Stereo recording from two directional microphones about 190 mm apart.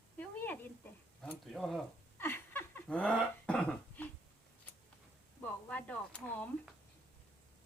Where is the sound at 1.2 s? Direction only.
5° left (ahead or behind).